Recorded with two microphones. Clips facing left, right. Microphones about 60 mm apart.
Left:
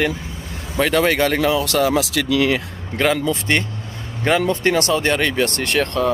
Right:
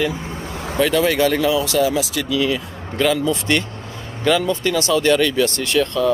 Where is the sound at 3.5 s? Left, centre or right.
Left.